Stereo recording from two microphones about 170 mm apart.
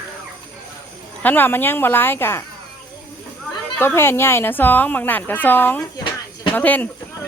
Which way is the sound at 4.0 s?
15° left (ahead or behind).